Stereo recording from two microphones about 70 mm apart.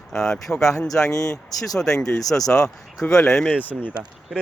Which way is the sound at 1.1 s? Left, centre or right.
Left.